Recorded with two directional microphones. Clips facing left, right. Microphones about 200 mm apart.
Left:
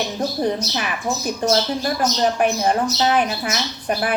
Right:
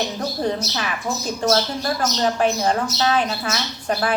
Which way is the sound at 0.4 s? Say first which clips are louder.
Left 1 dB; 15° left (ahead or behind).